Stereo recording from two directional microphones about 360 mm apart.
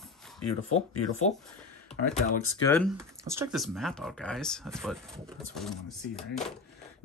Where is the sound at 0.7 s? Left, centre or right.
Centre.